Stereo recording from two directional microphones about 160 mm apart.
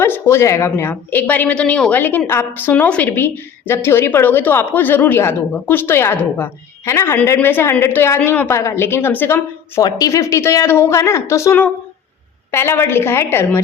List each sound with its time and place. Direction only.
0.0 s a woman's voice: 15° left (ahead or behind)